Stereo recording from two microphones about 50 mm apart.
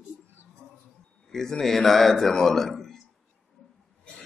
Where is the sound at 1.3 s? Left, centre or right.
Centre.